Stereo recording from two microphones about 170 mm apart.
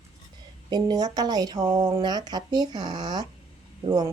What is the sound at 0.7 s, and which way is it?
Speech, 25° right (ahead or behind).